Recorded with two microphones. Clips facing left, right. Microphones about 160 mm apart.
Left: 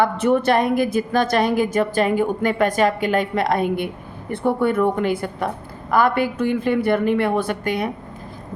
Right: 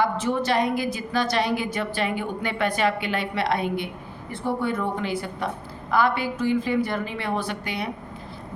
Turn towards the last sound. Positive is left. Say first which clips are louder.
# left 7 dB
turn(degrees=50)  # may be behind; listen again after turning